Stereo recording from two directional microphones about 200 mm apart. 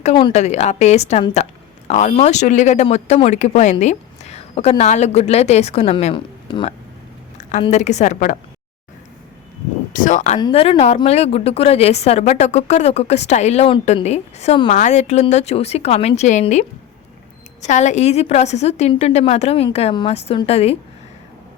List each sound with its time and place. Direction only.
0.0 s a woman's voice: 30° left (ahead or behind)
9.9 s a woman's voice: 40° left (ahead or behind)